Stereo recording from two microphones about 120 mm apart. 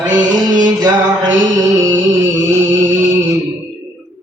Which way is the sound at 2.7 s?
25° right (ahead or behind).